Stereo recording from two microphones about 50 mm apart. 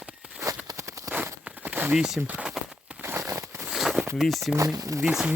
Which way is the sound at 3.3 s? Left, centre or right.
Right.